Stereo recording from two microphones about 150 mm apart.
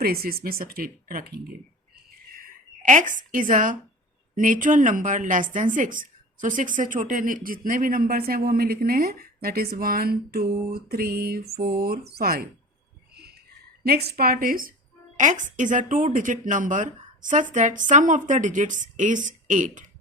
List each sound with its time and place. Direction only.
0.0 s speech: 90° right
2.4 s a woman's voice: 60° right (ahead or behind); by 12.5 s 85° right
13.8 s a woman's voice: 90° right; by 14.7 s 70° right (ahead or behind)
15.2 s speech: 55° right (ahead or behind)